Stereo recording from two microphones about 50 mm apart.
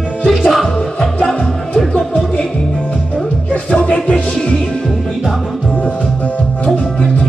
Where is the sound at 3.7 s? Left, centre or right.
Left.